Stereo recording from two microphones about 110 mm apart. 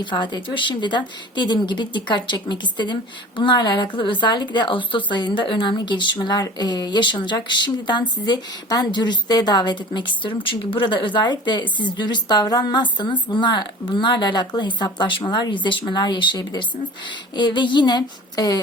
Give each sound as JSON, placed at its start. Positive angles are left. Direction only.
{"t": 0.0, "sound": "speech", "side_deg": 45}